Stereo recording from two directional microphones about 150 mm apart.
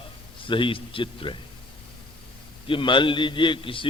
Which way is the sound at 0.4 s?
35° left (ahead or behind).